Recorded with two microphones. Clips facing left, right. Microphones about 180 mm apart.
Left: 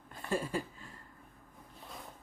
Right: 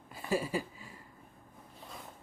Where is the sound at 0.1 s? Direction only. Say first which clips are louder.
Right 2 dB; 10° right (ahead or behind).